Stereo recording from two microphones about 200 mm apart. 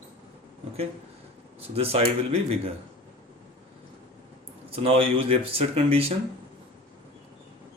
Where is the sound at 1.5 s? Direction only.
30° right (ahead or behind).